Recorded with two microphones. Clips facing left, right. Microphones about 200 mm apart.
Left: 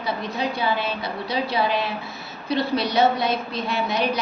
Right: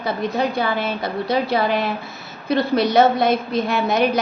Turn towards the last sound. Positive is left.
turn(degrees=-50)  # may be behind; listen again after turning